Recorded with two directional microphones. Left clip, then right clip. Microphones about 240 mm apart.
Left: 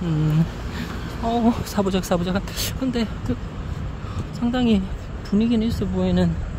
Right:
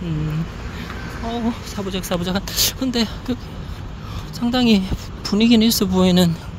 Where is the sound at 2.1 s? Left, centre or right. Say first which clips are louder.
Right 4 dB; centre.